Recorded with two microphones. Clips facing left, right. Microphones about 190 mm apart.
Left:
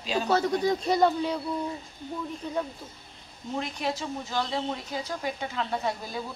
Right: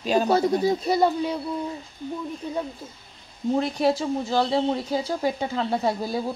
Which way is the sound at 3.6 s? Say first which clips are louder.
Right 7 dB; 35° right (ahead or behind).